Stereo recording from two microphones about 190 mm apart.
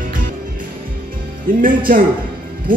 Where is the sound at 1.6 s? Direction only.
45° right (ahead or behind).